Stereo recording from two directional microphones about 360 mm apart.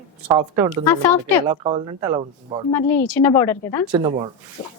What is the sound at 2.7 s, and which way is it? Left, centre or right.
Speech, centre.